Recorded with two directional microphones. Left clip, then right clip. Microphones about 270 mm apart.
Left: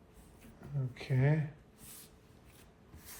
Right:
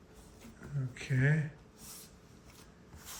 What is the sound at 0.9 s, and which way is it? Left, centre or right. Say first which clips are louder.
Speech: right 1 dB; centre.